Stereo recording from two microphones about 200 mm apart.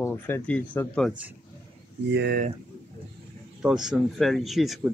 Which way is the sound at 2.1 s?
55° right (ahead or behind).